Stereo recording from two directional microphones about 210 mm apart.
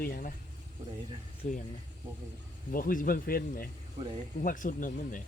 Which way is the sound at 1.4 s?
35° left (ahead or behind).